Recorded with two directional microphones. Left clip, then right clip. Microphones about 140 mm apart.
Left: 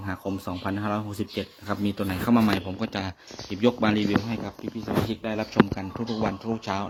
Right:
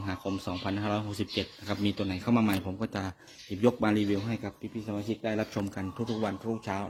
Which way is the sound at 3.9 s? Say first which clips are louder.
Left 4 dB; 35° right (ahead or behind).